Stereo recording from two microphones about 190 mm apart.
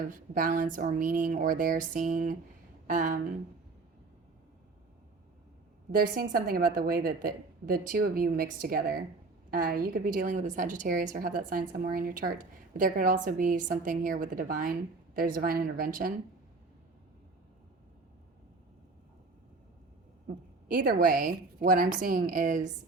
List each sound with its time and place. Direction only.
0.1 s a woman's voice: 45° right (ahead or behind)
5.9 s a woman's voice: 50° right (ahead or behind)
20.7 s a woman's voice: 45° right (ahead or behind)